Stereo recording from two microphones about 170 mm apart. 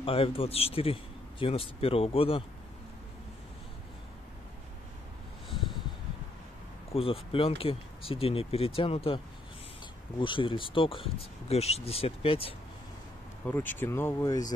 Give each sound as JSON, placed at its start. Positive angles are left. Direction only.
{"t": 0.0, "sound": "speech", "side_deg": 35}
{"t": 5.5, "sound": "snort", "side_deg": 0}
{"t": 6.9, "sound": "speech", "side_deg": 35}
{"t": 13.5, "sound": "speech", "side_deg": 10}